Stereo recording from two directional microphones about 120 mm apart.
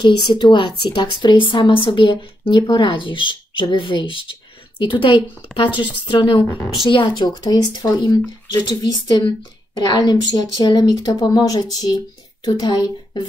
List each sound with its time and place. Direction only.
0.0 s a woman's voice: 35° left (ahead or behind)